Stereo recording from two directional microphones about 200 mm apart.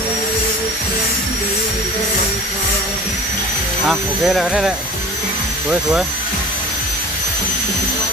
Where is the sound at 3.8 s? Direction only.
Centre (ahead or behind).